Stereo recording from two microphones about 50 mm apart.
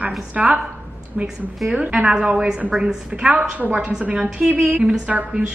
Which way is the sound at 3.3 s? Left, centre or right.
Right.